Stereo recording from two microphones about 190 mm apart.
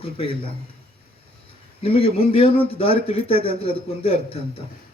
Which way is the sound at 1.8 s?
30° left (ahead or behind).